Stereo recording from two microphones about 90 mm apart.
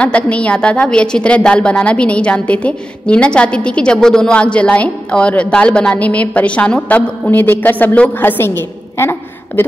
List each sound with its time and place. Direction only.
0.0 s a woman's voice: 15° left (ahead or behind)